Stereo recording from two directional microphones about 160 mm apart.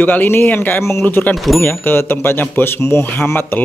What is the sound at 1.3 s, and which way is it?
Speech, centre (ahead or behind).